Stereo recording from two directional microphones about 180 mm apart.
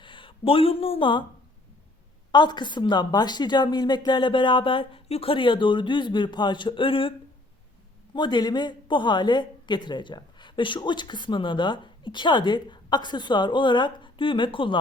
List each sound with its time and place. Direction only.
0.0 s speech: 25° left (ahead or behind)
2.3 s speech: 25° left (ahead or behind)
8.1 s speech: 25° left (ahead or behind)